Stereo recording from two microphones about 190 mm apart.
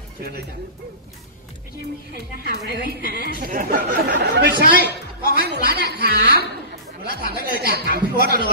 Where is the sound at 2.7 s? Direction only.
55° right (ahead or behind).